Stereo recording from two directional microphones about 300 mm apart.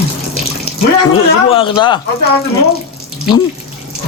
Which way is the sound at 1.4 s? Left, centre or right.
Centre.